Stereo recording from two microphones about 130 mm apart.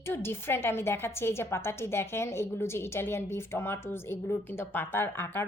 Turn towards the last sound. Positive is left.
turn(degrees=15)  # may be behind; listen again after turning